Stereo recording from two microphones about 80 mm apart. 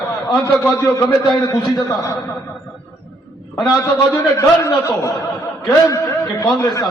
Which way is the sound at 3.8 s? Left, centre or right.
Left.